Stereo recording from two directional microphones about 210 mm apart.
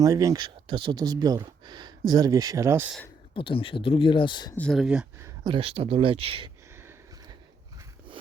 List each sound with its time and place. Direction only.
0.0 s speech: 15° right (ahead or behind)
3.3 s speech: 25° left (ahead or behind)
4.5 s speech: 5° left (ahead or behind)
5.2 s speech: 20° right (ahead or behind)
6.7 s sniff: 10° right (ahead or behind)